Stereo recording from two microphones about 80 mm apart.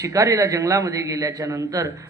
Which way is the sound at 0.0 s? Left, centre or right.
Right.